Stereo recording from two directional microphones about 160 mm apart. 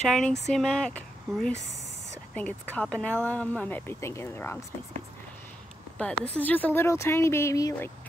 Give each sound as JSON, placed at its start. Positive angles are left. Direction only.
{"t": 0.1, "sound": "speech", "side_deg": 5}
{"t": 5.9, "sound": "speech", "side_deg": 5}